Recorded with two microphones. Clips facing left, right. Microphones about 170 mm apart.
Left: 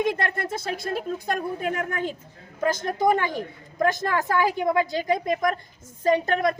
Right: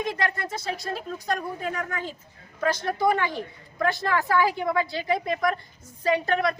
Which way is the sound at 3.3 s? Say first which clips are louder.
Left 3 dB; 45° left (ahead or behind).